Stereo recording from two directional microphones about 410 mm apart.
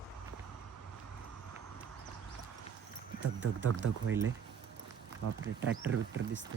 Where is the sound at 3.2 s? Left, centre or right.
Right.